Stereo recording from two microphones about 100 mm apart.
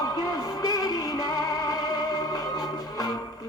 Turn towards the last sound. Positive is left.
turn(degrees=40)  # may be behind; listen again after turning